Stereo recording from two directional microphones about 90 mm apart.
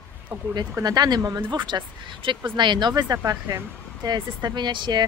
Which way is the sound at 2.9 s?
40° right (ahead or behind).